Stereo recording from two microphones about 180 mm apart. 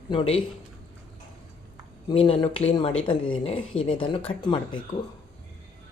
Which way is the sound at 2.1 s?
30° left (ahead or behind).